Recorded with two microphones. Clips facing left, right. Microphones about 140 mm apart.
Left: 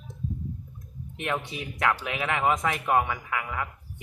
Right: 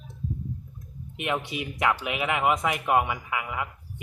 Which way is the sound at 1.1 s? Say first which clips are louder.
Right 2 dB; 10° right (ahead or behind).